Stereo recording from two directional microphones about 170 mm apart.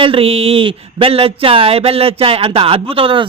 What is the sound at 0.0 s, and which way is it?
Speech, 30° right (ahead or behind).